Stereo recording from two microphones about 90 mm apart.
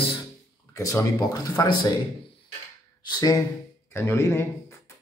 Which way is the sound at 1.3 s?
45° left (ahead or behind).